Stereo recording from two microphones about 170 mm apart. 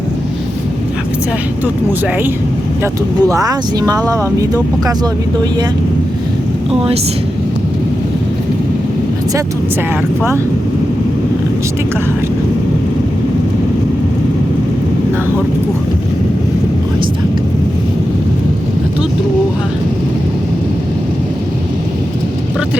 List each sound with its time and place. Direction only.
2.8 s speech: 20° right (ahead or behind)
6.7 s speech: 35° right (ahead or behind)